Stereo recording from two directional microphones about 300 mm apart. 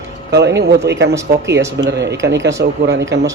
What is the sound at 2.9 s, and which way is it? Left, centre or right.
Speech, right.